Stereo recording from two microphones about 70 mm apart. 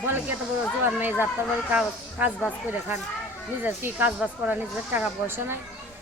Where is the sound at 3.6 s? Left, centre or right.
Right.